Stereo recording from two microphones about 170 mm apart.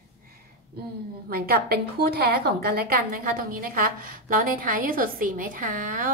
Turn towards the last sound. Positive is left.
turn(degrees=-55)  # may be behind; listen again after turning